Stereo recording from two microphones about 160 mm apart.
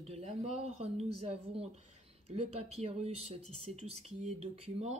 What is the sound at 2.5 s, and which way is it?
Speech, 40° right (ahead or behind).